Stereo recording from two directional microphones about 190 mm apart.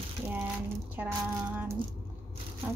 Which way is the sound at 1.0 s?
10° right (ahead or behind).